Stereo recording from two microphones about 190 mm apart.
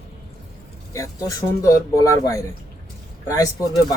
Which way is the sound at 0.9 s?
15° left (ahead or behind).